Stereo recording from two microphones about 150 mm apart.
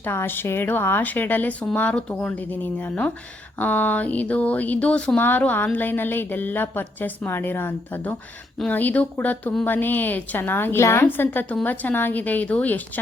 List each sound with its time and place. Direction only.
0.0 s speech: 15° left (ahead or behind)